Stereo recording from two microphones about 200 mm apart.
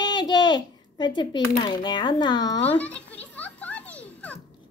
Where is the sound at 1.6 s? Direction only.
20° left (ahead or behind).